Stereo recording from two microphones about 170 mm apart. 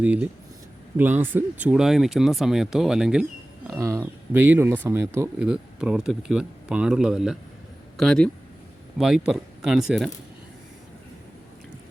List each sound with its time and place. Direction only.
0.0 s speech: 10° right (ahead or behind)
3.8 s speech: 15° right (ahead or behind); by 10.1 s centre (ahead or behind)